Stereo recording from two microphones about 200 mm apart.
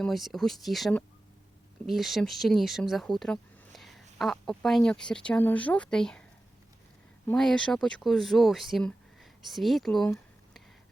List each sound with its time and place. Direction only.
0.0 s speech: centre (ahead or behind)
7.3 s speech: 5° left (ahead or behind)